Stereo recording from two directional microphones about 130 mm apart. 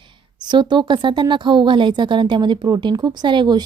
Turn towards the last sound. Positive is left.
turn(degrees=-35)  # may be behind; listen again after turning